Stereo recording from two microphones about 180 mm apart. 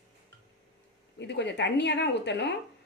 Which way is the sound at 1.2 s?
75° left (ahead or behind).